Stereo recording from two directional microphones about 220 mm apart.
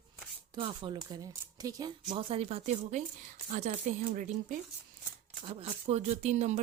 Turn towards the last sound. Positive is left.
turn(degrees=-30)  # may be behind; listen again after turning